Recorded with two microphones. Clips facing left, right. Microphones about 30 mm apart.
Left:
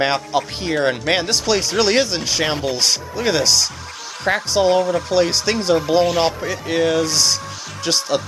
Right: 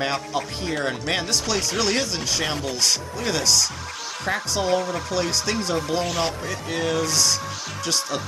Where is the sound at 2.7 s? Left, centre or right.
Left.